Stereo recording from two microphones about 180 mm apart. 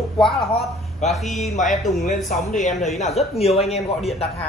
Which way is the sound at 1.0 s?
40° left (ahead or behind).